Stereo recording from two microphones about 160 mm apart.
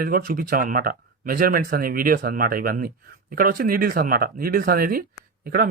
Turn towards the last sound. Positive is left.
turn(degrees=-65)  # may be behind; listen again after turning